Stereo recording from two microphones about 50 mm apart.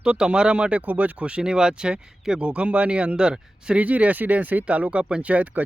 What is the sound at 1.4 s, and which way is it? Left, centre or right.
Speech, centre.